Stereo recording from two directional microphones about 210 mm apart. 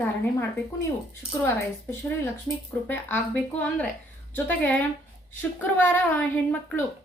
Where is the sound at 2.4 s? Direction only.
10° left (ahead or behind).